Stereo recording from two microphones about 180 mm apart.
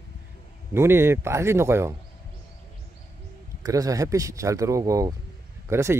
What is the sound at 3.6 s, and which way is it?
Speech, 20° right (ahead or behind).